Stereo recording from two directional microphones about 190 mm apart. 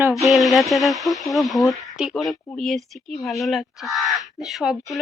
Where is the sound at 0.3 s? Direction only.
Centre (ahead or behind).